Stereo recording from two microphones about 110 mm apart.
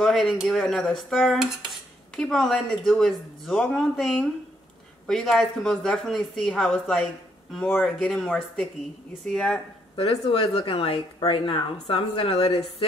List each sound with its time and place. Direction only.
0.0 s dishes: centre (ahead or behind)
9.9 s a woman's voice: 60° left (ahead or behind)